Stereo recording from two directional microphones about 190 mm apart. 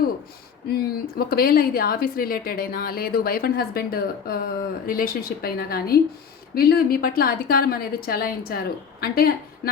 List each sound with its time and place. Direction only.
0.7 s a woman's voice: 55° left (ahead or behind)